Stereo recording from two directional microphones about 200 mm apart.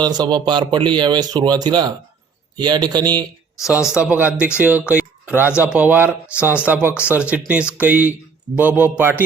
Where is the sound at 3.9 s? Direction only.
5° right (ahead or behind).